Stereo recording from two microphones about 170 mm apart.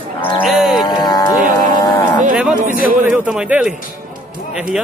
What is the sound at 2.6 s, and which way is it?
Speech, 55° right (ahead or behind).